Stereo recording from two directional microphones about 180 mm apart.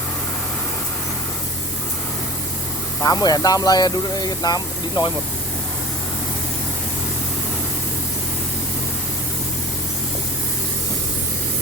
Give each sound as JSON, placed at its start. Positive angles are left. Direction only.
{"t": 3.0, "sound": "speech", "side_deg": 20}